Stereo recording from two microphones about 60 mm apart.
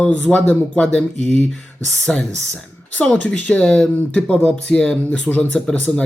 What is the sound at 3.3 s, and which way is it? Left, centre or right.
Speech, left.